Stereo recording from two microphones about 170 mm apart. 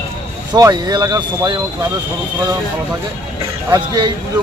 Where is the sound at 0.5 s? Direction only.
25° right (ahead or behind).